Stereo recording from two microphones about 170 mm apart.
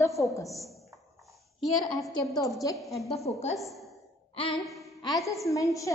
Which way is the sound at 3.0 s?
40° left (ahead or behind).